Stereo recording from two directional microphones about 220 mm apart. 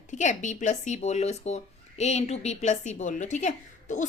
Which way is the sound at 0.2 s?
35° left (ahead or behind).